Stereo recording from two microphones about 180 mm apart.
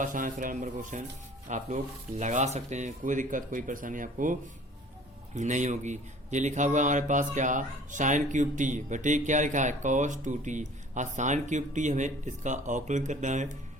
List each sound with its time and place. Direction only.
0.0 s a man's voice: 45° right (ahead or behind)